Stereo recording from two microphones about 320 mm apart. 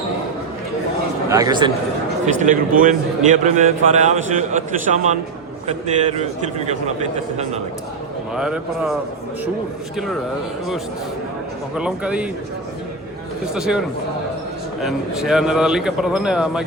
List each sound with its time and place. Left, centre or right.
1.3 s speech: centre
2.4 s a man's voice: right
5.6 s a man's voice: centre
8.4 s a man's voice: centre
11.7 s a man's voice: centre
13.5 s a man's voice: centre